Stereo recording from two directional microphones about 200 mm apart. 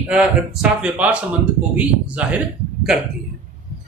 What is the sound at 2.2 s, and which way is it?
Speech, 5° right (ahead or behind).